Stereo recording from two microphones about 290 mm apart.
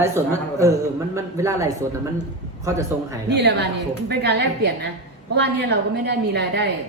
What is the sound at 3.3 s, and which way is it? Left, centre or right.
A woman's voice, right.